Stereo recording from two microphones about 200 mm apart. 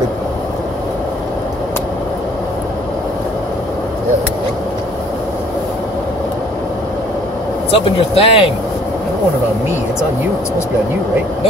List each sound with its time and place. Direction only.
7.7 s speech: 30° left (ahead or behind)